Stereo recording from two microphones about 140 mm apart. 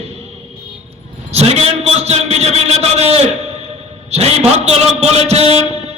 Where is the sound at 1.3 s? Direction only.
50° right (ahead or behind).